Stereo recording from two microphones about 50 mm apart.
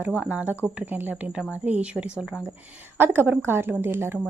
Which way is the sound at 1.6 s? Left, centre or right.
Right.